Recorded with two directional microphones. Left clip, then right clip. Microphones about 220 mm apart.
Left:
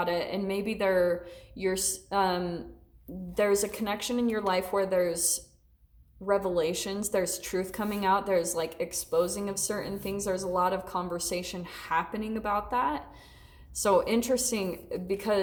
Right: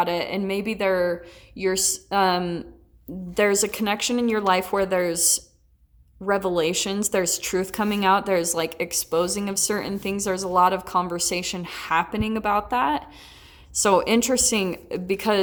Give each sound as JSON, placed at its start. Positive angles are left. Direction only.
{"t": 0.0, "sound": "a woman's voice", "side_deg": -25}